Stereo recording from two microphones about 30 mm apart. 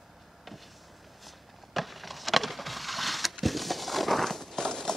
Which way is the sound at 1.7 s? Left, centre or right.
Centre.